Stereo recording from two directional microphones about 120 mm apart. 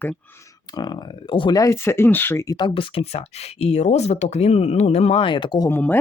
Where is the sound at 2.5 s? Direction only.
45° left (ahead or behind).